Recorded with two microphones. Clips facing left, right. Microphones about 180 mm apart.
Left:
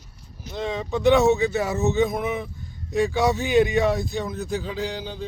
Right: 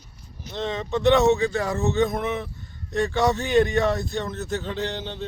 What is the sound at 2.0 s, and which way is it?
A man's voice, centre (ahead or behind).